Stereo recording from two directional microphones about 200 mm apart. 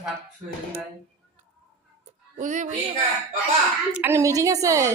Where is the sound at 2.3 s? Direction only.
40° right (ahead or behind).